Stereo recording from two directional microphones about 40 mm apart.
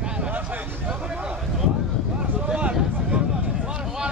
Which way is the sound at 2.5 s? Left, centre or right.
Right.